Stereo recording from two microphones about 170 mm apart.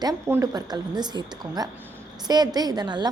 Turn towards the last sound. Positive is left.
turn(degrees=-25)  # may be behind; listen again after turning